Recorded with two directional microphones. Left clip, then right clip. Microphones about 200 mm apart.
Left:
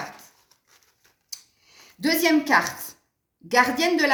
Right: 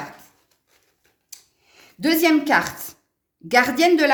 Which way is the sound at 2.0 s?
50° right (ahead or behind).